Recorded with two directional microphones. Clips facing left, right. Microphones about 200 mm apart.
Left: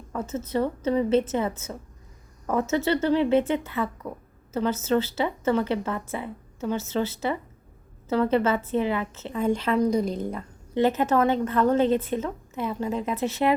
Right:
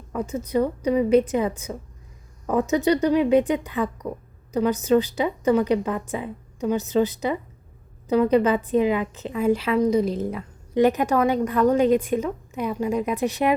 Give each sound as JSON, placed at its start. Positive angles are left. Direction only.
{"t": 0.1, "sound": "a woman's voice", "side_deg": -15}
{"t": 10.8, "sound": "a woman's voice", "side_deg": -15}